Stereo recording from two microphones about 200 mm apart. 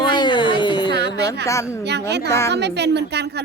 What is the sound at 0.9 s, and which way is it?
A woman's voice, 55° right (ahead or behind).